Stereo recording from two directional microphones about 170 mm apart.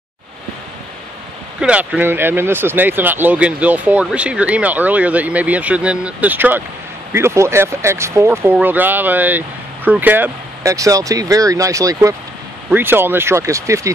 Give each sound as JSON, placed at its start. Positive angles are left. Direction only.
{"t": 1.6, "sound": "speech", "side_deg": -5}